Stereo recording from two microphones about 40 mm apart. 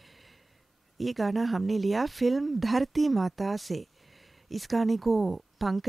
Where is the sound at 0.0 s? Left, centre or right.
Centre.